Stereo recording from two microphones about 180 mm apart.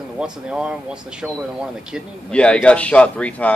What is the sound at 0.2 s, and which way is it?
Speech, 5° right (ahead or behind).